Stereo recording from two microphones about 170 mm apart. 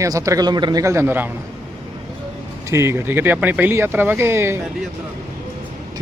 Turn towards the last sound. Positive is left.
turn(degrees=-15)  # may be behind; listen again after turning